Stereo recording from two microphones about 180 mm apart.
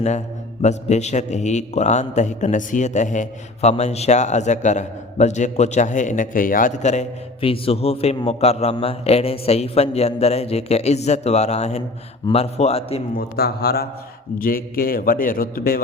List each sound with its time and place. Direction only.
0.6 s a man's voice: 40° left (ahead or behind)
13.1 s a man's voice: 60° left (ahead or behind)